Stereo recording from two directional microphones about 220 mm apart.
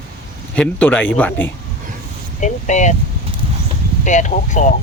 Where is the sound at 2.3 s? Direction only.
35° left (ahead or behind).